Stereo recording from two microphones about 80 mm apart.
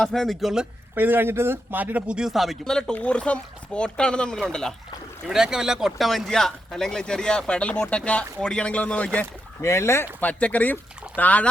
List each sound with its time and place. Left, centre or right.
0.0 s speech: centre
0.9 s speech: right; by 4.7 s centre
5.3 s speech: centre
9.6 s speech: left
10.2 s speech: centre